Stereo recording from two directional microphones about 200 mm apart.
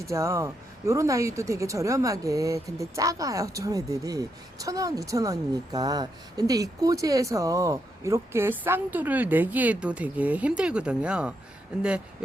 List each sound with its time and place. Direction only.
0.1 s speech: 15° right (ahead or behind)